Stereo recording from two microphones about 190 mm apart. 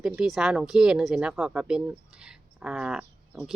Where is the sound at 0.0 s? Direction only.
Centre (ahead or behind).